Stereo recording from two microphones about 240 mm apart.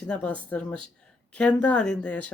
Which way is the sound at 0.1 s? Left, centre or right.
Centre.